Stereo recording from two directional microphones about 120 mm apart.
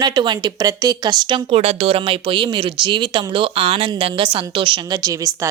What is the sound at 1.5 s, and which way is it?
A woman's voice, 60° right (ahead or behind).